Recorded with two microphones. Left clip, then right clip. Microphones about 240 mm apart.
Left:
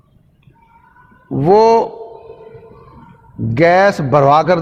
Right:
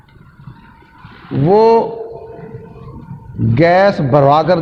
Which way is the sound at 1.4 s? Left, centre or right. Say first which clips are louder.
Even; left.